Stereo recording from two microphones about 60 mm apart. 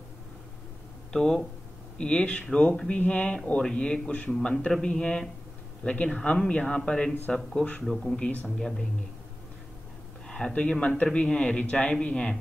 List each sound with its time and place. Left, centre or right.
1.1 s speech: centre
7.8 s speech: centre
8.2 s speech: left
8.5 s speech: centre
10.2 s a sound: centre
10.5 s speech: left